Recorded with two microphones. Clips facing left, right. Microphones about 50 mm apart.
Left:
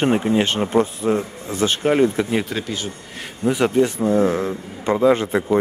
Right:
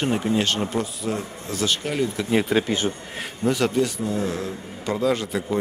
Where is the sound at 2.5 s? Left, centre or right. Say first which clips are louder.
Right 5 dB; right.